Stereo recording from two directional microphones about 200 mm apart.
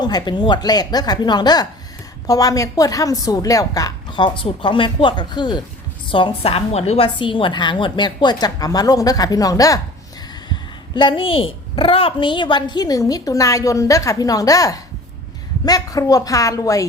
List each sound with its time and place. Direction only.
0.0 s a woman's voice: 20° left (ahead or behind)